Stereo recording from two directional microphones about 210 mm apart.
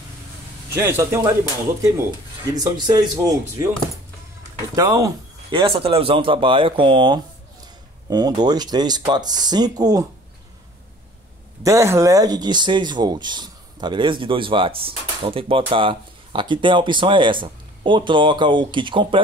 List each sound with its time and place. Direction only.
0.8 s a man's voice: 10° right (ahead or behind)
2.5 s speech: 20° right (ahead or behind)
11.6 s speech: 15° right (ahead or behind)